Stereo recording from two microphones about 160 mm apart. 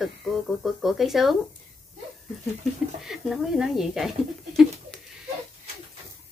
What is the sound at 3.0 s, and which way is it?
Speech, centre (ahead or behind).